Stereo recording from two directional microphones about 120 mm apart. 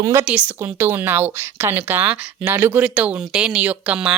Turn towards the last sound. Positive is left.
turn(degrees=-10)  # may be behind; listen again after turning